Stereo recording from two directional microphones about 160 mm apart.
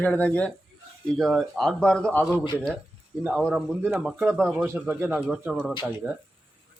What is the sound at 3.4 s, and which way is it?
Speech, 5° left (ahead or behind).